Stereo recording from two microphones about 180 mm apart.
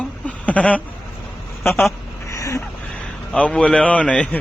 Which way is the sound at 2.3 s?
15° left (ahead or behind).